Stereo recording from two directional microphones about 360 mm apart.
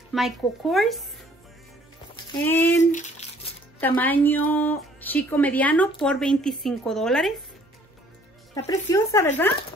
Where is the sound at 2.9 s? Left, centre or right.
Centre.